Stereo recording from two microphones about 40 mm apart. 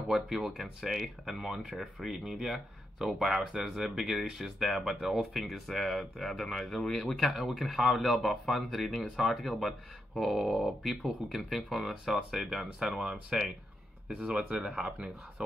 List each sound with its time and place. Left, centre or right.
0.1 s speech: centre
7.2 s speech: centre
14.2 s speech: right